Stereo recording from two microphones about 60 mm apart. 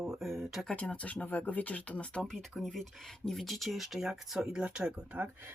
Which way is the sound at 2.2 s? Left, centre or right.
Centre.